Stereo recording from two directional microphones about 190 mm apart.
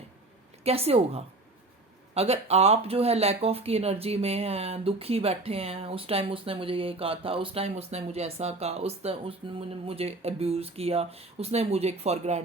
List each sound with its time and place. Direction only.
0.6 s speech: 30° right (ahead or behind)